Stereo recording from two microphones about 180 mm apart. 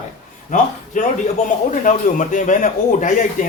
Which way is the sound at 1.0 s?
45° left (ahead or behind).